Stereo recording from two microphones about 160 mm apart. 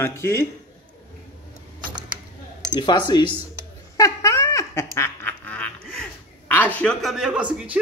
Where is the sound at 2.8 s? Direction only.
30° left (ahead or behind).